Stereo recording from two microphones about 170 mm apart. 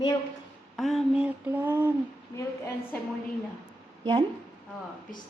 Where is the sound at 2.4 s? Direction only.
15° left (ahead or behind).